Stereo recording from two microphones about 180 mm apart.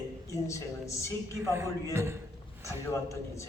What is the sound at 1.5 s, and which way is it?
Speech, 15° right (ahead or behind).